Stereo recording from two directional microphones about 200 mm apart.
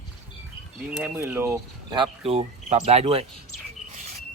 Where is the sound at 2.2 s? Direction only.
30° right (ahead or behind).